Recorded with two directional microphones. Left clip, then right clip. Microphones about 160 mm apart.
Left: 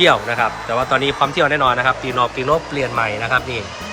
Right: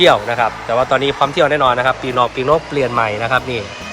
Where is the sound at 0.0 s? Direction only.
10° left (ahead or behind).